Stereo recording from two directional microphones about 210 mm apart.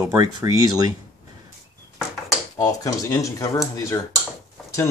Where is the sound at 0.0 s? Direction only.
15° right (ahead or behind).